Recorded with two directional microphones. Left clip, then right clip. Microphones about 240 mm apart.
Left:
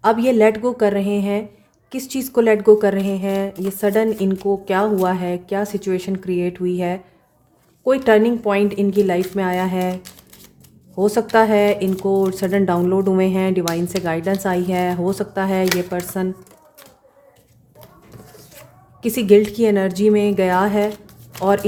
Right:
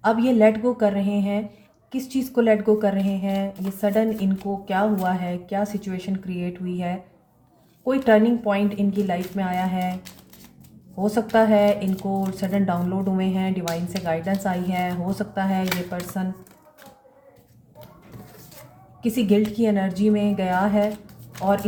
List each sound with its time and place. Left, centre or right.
0.0 s speech: left
10.9 s speech: left
19.0 s speech: left